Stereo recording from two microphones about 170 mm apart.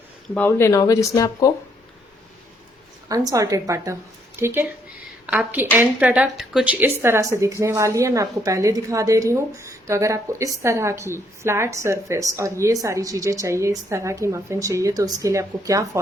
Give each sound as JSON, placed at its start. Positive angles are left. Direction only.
{"t": 0.3, "sound": "speech", "side_deg": 15}
{"t": 3.1, "sound": "a woman's voice", "side_deg": -20}